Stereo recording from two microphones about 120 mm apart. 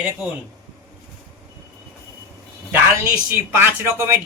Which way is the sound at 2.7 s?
20° right (ahead or behind).